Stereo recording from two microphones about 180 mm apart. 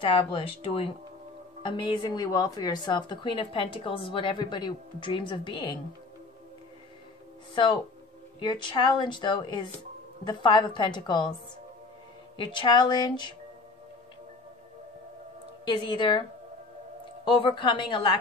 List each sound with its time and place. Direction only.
0.0 s a woman's voice: 30° left (ahead or behind)
7.5 s a woman's voice: 30° left (ahead or behind)
12.4 s a woman's voice: 25° left (ahead or behind)
15.6 s a woman's voice: 25° left (ahead or behind)